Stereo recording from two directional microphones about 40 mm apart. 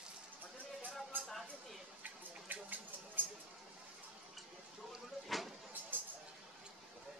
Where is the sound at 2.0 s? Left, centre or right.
Right.